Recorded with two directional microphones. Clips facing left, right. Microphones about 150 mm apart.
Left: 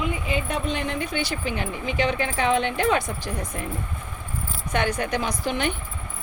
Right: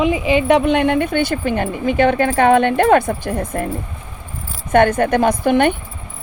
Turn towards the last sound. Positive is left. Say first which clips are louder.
# right 12 dB
turn(degrees=-55)  # may be behind; listen again after turning